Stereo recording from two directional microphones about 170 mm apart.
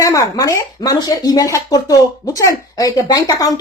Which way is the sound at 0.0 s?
20° left (ahead or behind).